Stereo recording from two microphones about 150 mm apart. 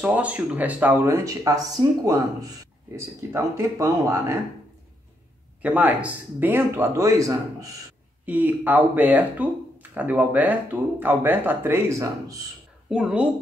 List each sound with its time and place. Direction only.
0.0 s speech: 10° right (ahead or behind)
5.6 s speech: 10° right (ahead or behind)
8.3 s speech: 10° right (ahead or behind)
12.9 s speech: 5° right (ahead or behind)